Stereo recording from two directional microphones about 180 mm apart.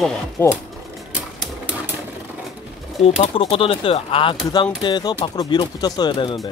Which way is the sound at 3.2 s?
30° left (ahead or behind).